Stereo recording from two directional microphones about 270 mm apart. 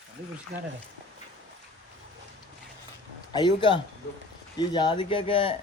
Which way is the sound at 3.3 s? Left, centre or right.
Centre.